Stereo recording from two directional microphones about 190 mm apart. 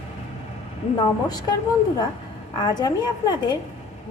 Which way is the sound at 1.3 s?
20° left (ahead or behind).